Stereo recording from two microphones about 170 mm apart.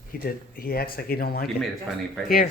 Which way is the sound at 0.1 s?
60° left (ahead or behind).